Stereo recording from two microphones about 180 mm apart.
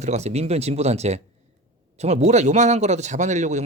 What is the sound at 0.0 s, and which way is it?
Speech, 40° right (ahead or behind).